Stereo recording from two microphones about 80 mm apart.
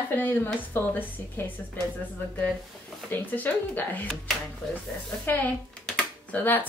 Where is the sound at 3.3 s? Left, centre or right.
Left.